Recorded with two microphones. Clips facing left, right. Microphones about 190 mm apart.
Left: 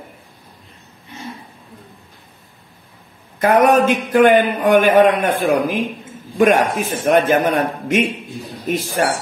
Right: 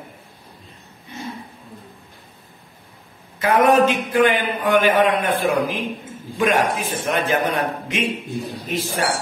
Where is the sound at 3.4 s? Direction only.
50° left (ahead or behind).